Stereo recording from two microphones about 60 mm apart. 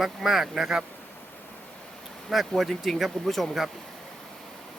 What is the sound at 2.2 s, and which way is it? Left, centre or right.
Speech, centre.